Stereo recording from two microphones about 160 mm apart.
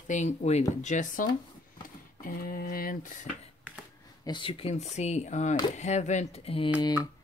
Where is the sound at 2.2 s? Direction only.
70° left (ahead or behind).